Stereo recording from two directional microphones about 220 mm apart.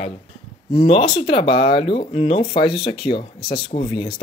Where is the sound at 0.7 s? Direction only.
25° left (ahead or behind).